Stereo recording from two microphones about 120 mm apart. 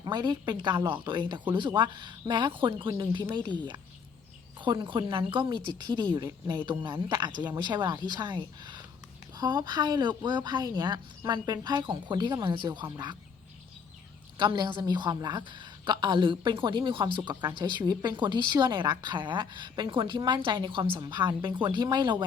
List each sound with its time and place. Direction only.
0.0 s a woman's voice: 35° right (ahead or behind)
4.6 s a woman's voice: 40° right (ahead or behind)
14.3 s a woman's voice: 40° right (ahead or behind)